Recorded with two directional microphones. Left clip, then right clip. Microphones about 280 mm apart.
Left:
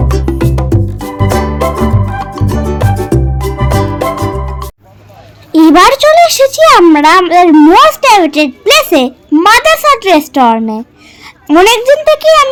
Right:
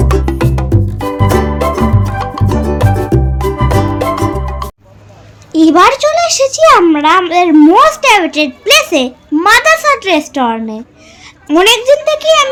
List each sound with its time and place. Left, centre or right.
0.0 s music: centre
5.5 s speech: left